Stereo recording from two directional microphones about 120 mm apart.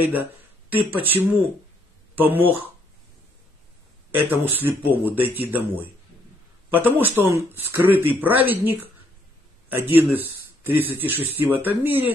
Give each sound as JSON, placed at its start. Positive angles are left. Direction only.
{"t": 0.0, "sound": "a sound", "side_deg": -15}
{"t": 0.8, "sound": "speech", "side_deg": -15}
{"t": 4.1, "sound": "speech", "side_deg": -15}